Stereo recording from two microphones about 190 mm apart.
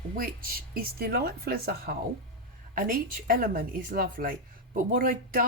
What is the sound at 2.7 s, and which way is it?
A woman's voice, 50° right (ahead or behind).